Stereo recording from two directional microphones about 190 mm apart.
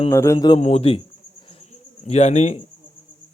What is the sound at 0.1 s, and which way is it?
Speech, 15° left (ahead or behind).